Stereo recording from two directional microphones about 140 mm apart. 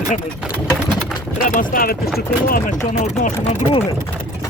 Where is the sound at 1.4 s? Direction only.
75° left (ahead or behind).